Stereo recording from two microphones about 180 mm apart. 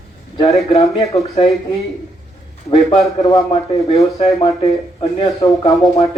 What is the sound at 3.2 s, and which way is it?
Speech, 30° left (ahead or behind).